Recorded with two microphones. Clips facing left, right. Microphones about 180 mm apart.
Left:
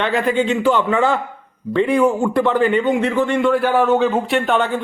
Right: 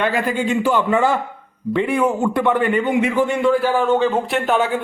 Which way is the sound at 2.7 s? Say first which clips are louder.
Left 1 dB; 10° right (ahead or behind).